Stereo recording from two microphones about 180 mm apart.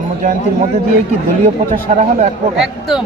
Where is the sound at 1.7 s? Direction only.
45° right (ahead or behind).